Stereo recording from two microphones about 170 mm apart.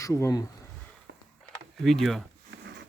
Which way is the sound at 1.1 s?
90° right.